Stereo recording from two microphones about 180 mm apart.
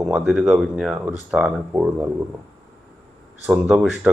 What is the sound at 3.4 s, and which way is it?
Speech, 5° right (ahead or behind).